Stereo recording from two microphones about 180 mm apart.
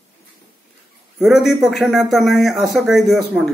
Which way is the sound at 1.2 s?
Centre (ahead or behind).